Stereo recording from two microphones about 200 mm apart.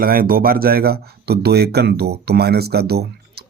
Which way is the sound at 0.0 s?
45° right (ahead or behind).